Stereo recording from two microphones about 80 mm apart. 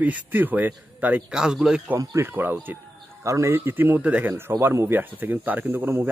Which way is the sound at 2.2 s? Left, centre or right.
Right.